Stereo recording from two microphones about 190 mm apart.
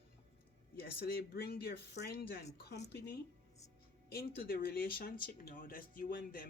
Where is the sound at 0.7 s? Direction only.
55° left (ahead or behind).